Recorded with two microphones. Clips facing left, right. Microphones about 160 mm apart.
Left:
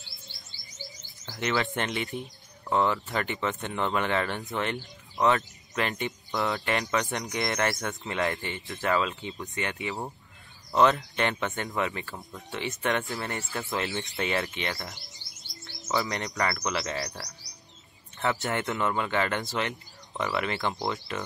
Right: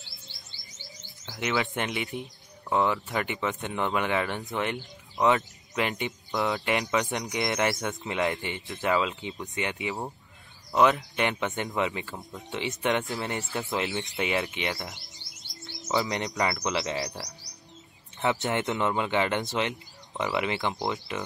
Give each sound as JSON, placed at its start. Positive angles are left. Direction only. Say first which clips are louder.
{"t": 0.7, "sound": "chirp", "louder": "left 5 dB", "side_deg": 0}
{"t": 1.6, "sound": "speech", "louder": "even", "side_deg": -15}